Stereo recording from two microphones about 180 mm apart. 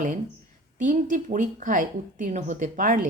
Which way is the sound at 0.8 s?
45° right (ahead or behind).